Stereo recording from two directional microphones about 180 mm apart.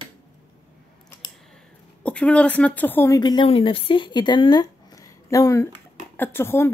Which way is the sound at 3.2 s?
25° left (ahead or behind).